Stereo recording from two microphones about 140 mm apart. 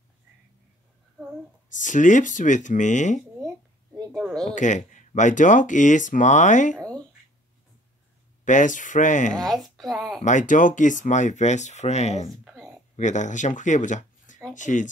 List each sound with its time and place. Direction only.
1.7 s speech: 65° left (ahead or behind)
4.3 s speech: 5° left (ahead or behind)
4.6 s speech: 60° left (ahead or behind)
8.5 s speech: 65° left (ahead or behind)
9.4 s speech: centre (ahead or behind)
10.2 s speech: 65° left (ahead or behind)